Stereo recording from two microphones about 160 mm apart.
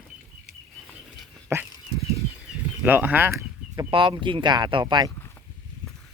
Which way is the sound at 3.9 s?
30° right (ahead or behind).